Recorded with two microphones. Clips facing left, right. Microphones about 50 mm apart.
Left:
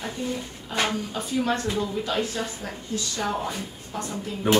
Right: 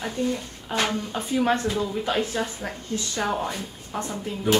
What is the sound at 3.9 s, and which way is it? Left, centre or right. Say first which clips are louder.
Speech: right 2 dB; right.